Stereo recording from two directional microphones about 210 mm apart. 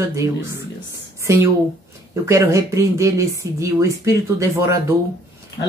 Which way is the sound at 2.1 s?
15° right (ahead or behind).